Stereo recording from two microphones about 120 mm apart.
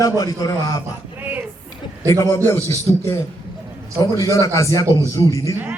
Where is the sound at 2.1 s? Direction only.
20° left (ahead or behind).